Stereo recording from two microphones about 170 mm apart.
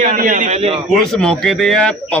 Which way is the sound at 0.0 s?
50° right (ahead or behind).